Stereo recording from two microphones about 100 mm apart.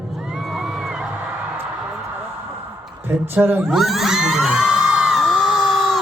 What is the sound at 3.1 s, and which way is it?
Speech, 20° right (ahead or behind).